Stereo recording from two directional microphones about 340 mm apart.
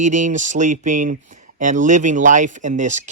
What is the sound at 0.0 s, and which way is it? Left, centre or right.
Speech, right.